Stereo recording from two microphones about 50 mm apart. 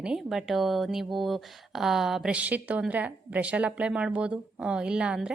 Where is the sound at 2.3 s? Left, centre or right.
Right.